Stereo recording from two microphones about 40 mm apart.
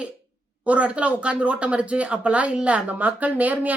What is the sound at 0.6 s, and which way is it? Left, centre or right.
Speech, right.